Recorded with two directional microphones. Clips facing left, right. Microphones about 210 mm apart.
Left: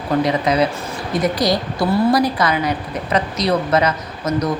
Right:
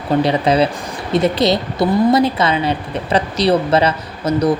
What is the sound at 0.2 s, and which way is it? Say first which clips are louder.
A woman's voice: right 2 dB; 30° right (ahead or behind).